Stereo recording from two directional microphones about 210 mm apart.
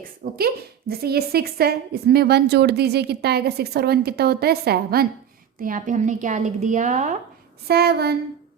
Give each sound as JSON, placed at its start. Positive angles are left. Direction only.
{"t": 0.3, "sound": "a woman's voice", "side_deg": -50}
{"t": 7.7, "sound": "a woman's voice", "side_deg": -50}